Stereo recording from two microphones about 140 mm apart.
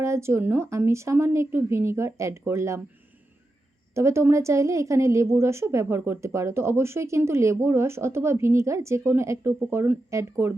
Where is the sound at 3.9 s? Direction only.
20° right (ahead or behind).